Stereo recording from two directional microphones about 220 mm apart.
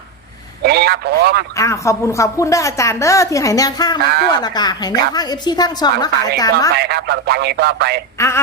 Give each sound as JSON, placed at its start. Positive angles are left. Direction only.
{"t": 0.6, "sound": "a man's voice", "side_deg": -45}
{"t": 1.5, "sound": "a woman's voice", "side_deg": 15}
{"t": 4.0, "sound": "speech", "side_deg": -45}
{"t": 4.4, "sound": "a woman's voice", "side_deg": 20}
{"t": 6.7, "sound": "speech", "side_deg": -50}